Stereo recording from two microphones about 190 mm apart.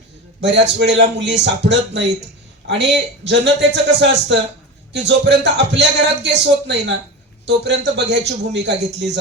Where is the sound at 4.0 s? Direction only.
65° right (ahead or behind).